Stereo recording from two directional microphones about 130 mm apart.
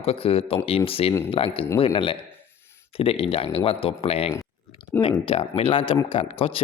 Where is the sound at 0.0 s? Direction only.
45° left (ahead or behind).